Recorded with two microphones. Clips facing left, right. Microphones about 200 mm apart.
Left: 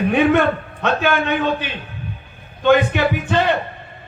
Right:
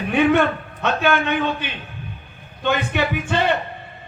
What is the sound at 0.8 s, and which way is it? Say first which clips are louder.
A man's voice: left 1 dB; 50° left (ahead or behind).